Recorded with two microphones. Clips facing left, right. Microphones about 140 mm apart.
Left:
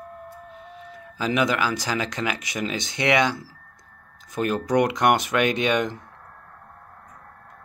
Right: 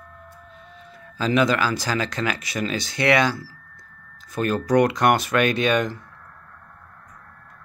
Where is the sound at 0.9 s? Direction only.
15° left (ahead or behind).